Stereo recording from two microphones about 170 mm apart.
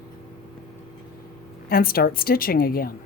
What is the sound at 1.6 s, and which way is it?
A woman's voice, 60° left (ahead or behind).